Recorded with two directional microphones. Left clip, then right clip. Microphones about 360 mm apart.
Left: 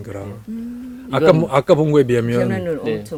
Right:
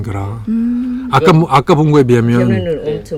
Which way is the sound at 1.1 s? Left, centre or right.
Right.